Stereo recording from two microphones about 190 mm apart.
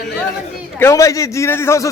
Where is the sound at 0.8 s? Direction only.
15° left (ahead or behind).